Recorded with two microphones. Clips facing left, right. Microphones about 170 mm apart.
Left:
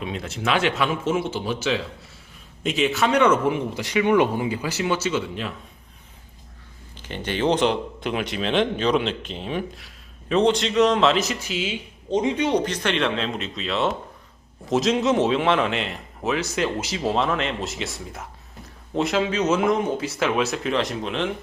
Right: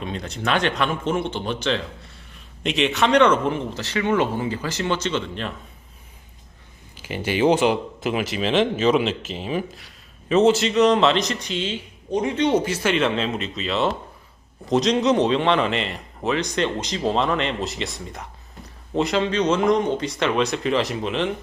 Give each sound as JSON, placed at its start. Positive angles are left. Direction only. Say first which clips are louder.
{"t": 0.0, "sound": "speech", "louder": "even", "side_deg": 5}
{"t": 6.9, "sound": "speech", "louder": "right 3 dB", "side_deg": -10}
{"t": 12.1, "sound": "speech", "louder": "left 1 dB", "side_deg": 20}
{"t": 12.4, "sound": "speech", "louder": "right 2 dB", "side_deg": -5}